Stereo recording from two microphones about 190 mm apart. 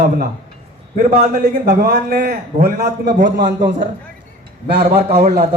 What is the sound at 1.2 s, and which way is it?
A man's voice, 40° right (ahead or behind).